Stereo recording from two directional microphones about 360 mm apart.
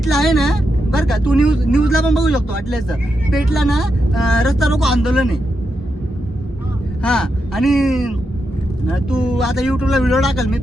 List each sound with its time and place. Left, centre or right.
0.0 s speech: centre
7.0 s speech: centre